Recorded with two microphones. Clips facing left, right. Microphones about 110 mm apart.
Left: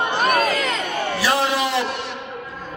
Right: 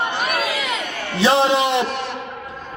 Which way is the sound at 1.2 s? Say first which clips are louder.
Right 6 dB; 25° right (ahead or behind).